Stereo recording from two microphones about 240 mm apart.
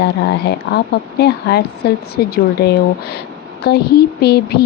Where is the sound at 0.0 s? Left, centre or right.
Left.